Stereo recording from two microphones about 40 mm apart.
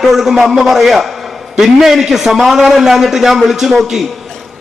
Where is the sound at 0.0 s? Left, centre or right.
Centre.